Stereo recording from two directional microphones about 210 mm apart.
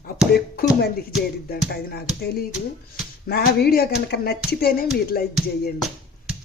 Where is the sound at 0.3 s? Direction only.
50° left (ahead or behind).